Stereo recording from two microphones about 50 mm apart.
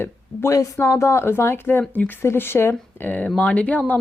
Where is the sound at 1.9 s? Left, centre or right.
Left.